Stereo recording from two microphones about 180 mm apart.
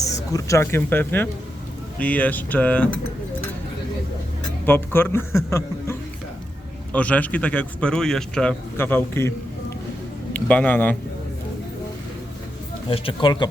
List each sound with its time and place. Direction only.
0.0 s speech: 15° left (ahead or behind)
4.6 s speech: 10° left (ahead or behind)
12.9 s speech: 30° left (ahead or behind)